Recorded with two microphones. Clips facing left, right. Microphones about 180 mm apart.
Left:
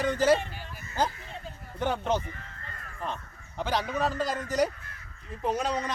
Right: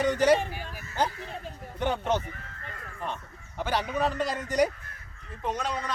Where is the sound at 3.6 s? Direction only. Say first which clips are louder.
Right 1 dB; 10° right (ahead or behind).